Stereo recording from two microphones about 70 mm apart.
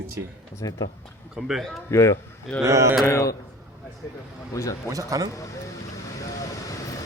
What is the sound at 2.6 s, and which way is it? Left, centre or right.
Speech, right.